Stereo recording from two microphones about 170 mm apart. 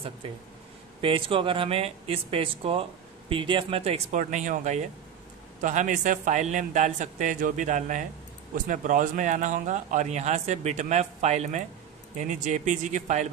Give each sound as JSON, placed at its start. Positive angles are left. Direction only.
{"t": 1.0, "sound": "speech", "side_deg": -30}